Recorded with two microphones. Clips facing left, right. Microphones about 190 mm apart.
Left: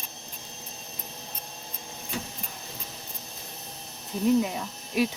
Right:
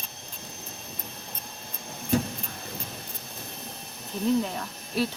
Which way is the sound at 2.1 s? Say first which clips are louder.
Right 11 dB; 45° right (ahead or behind).